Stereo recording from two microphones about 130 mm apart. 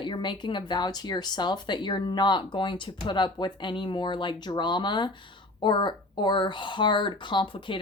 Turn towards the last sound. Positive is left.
turn(degrees=40)  # may be behind; listen again after turning